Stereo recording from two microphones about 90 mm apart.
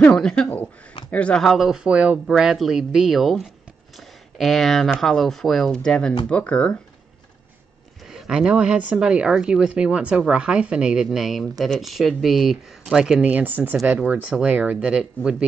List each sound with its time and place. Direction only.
0.0 s speech: 10° left (ahead or behind)
8.1 s speech: 5° right (ahead or behind)